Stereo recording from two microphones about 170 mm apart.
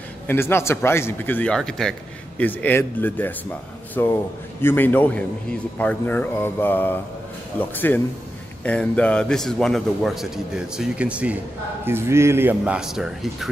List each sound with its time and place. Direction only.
0.3 s a man's voice: 15° left (ahead or behind); by 13.5 s centre (ahead or behind)